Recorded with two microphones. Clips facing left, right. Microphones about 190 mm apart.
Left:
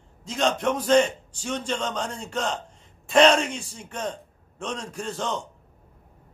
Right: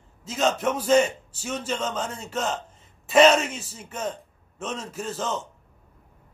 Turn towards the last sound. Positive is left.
turn(degrees=-5)  # may be behind; listen again after turning